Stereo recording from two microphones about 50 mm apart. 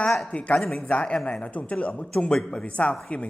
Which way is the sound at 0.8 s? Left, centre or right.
Left.